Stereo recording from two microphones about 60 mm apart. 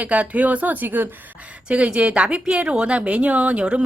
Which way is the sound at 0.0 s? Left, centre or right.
Right.